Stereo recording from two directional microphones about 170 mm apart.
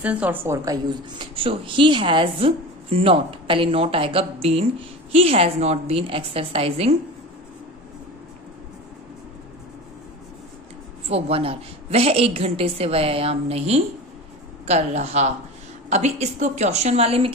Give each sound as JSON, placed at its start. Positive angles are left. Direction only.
{"t": 0.0, "sound": "a woman's voice", "side_deg": -10}
{"t": 0.8, "sound": "a woman's voice", "side_deg": -30}
{"t": 11.1, "sound": "a woman's voice", "side_deg": -35}